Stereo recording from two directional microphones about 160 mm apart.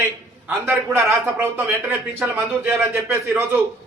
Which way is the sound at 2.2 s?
10° right (ahead or behind).